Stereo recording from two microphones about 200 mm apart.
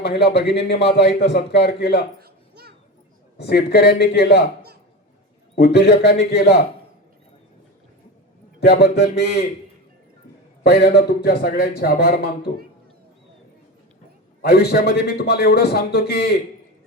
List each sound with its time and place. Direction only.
0.0 s a man's voice: 55° left (ahead or behind)
2.2 s children playing: 50° right (ahead or behind)
3.3 s a man's voice: 55° left (ahead or behind)
5.5 s a man's voice: 55° left (ahead or behind)
8.6 s a man's voice: 55° left (ahead or behind)
10.6 s a man's voice: 50° left (ahead or behind)
14.4 s a man's voice: 50° left (ahead or behind)